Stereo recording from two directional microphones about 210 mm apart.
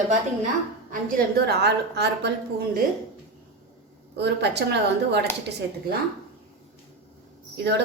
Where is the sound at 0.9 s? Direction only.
45° right (ahead or behind).